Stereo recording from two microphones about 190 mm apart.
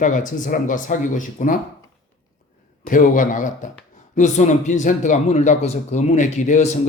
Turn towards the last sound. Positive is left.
turn(degrees=40)  # may be behind; listen again after turning